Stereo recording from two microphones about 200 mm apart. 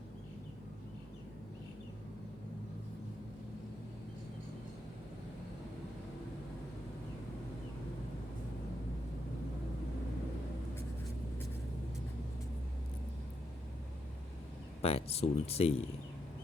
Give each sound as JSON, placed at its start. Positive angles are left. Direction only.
{"t": 14.8, "sound": "speech", "side_deg": 30}